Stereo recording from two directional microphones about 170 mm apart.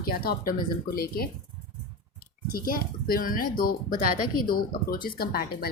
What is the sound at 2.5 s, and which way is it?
Speech, 55° left (ahead or behind).